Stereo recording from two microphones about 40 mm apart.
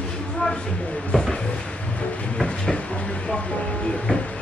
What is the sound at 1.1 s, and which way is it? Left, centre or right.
Drawer open or close, left.